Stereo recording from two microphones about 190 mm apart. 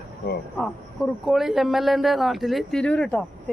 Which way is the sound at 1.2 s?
Centre (ahead or behind).